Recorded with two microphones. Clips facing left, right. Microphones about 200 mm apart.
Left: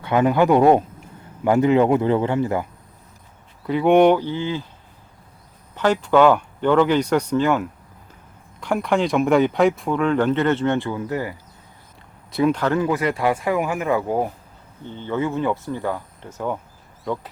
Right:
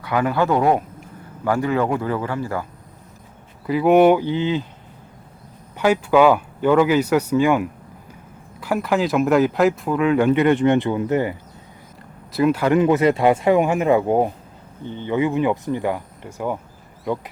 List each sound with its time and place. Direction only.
0.0 s speech: 20° left (ahead or behind)
3.7 s speech: 5° right (ahead or behind); by 4.6 s 20° right (ahead or behind)
5.7 s speech: 10° right (ahead or behind)
12.3 s speech: 5° right (ahead or behind)